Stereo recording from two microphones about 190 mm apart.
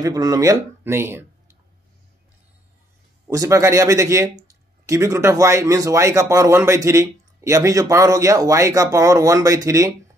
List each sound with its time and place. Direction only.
0.0 s speech: 20° right (ahead or behind)
3.3 s speech: 15° right (ahead or behind)